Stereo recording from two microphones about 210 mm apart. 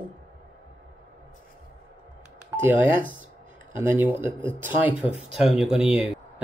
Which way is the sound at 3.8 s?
10° right (ahead or behind).